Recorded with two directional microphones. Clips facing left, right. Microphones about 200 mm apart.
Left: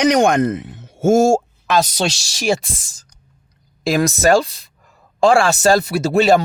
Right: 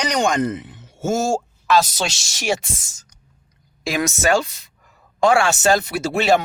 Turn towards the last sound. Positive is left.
turn(degrees=35)  # may be behind; listen again after turning